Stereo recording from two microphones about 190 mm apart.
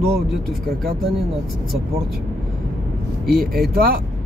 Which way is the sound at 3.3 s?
Centre (ahead or behind).